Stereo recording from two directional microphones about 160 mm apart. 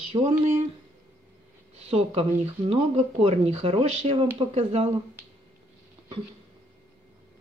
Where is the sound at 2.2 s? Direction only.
35° right (ahead or behind).